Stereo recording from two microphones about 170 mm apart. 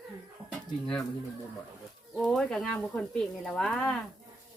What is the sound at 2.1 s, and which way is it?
Speech, 5° left (ahead or behind).